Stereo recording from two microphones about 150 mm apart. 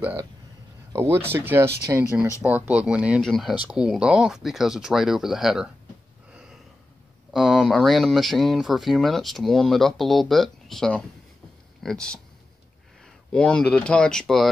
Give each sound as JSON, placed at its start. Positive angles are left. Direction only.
{"t": 0.9, "sound": "speech", "side_deg": -15}
{"t": 7.3, "sound": "speech", "side_deg": 0}